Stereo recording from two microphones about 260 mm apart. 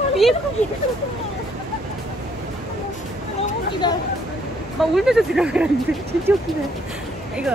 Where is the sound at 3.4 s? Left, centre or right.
Centre.